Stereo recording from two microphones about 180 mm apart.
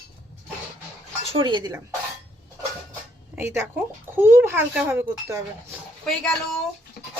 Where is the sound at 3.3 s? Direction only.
15° right (ahead or behind).